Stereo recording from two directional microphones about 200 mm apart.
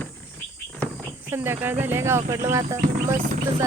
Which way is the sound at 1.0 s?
10° right (ahead or behind).